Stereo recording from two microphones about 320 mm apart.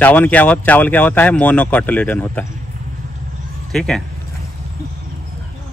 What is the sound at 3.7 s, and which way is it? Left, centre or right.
Speech, centre.